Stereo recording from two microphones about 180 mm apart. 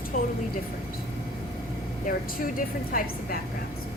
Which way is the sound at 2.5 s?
50° left (ahead or behind).